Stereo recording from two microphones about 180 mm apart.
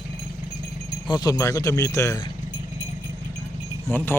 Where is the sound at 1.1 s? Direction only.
25° left (ahead or behind).